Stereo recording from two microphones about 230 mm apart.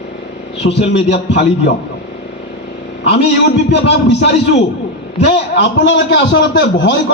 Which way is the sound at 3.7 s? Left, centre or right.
Left.